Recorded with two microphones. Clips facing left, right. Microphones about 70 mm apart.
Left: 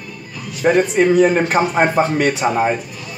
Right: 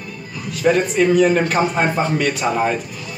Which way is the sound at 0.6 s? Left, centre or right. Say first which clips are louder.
Left 2 dB; left.